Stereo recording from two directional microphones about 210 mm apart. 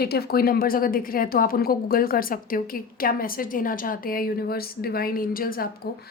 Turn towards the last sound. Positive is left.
turn(degrees=45)  # may be behind; listen again after turning